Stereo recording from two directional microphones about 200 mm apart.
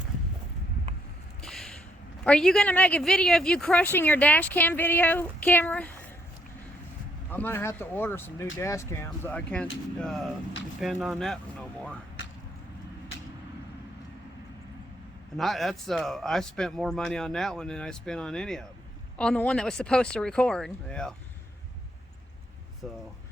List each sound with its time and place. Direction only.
1.4 s a sound: centre (ahead or behind)
2.2 s speech: 5° left (ahead or behind)
7.3 s speech: 10° left (ahead or behind)
15.4 s speech: centre (ahead or behind)
22.8 s speech: 5° left (ahead or behind)